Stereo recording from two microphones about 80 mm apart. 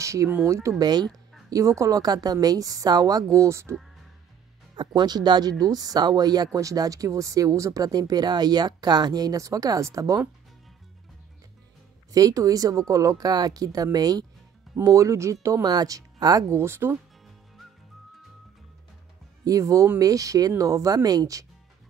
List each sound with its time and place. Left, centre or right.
0.0 s speech: right
4.7 s speech: right
12.1 s speech: right
14.8 s speech: right
15.6 s speech: right
16.4 s speech: right
19.4 s speech: right